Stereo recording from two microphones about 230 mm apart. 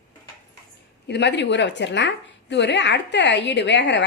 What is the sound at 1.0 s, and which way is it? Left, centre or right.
A woman's voice, left.